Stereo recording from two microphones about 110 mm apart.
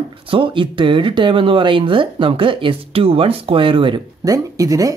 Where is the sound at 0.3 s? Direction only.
50° right (ahead or behind).